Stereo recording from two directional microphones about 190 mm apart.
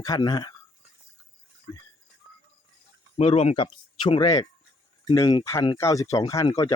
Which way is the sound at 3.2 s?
30° left (ahead or behind).